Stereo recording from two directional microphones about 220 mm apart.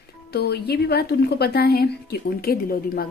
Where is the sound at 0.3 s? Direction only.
45° left (ahead or behind).